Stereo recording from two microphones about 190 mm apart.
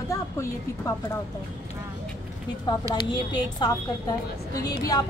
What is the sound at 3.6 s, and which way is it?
A woman's voice, 20° left (ahead or behind).